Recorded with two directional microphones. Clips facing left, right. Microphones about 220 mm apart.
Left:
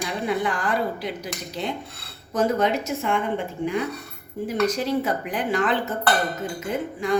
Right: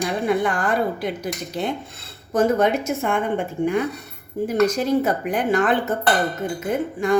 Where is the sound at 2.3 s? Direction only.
50° right (ahead or behind).